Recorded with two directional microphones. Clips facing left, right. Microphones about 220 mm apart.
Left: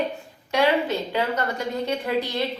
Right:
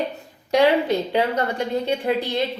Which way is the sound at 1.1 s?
35° right (ahead or behind).